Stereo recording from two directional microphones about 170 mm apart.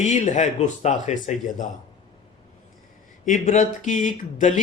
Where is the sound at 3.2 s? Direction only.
50° left (ahead or behind).